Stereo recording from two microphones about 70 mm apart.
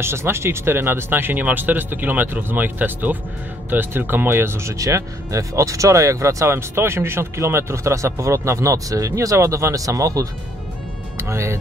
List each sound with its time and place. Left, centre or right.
0.0 s speech: right
11.1 s speech: right